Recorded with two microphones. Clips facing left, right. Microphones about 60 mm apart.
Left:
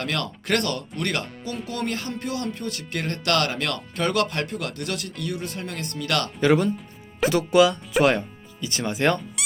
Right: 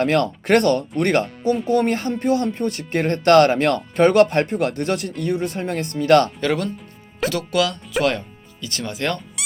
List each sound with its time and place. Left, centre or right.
0.0 s speech: right
6.4 s speech: centre
7.3 s speech: centre